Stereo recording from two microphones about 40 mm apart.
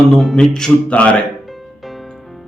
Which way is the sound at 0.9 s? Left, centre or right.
Left.